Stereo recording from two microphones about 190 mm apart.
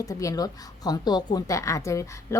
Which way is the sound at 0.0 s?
20° left (ahead or behind).